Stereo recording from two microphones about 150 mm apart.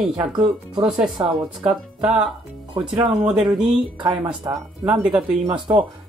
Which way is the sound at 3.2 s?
5° right (ahead or behind).